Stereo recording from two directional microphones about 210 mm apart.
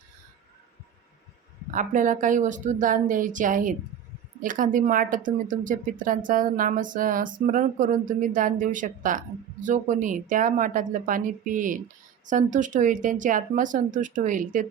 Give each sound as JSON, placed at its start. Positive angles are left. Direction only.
{"t": 1.7, "sound": "speech", "side_deg": -40}